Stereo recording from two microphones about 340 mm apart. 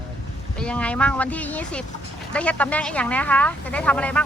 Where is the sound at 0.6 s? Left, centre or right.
Centre.